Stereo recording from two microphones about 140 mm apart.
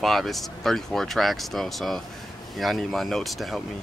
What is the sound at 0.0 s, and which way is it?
A man's voice, centre (ahead or behind).